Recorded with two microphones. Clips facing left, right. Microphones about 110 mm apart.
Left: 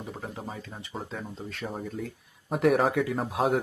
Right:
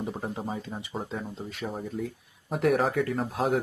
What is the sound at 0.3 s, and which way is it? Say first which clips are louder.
Speech: right 4 dB; 20° right (ahead or behind).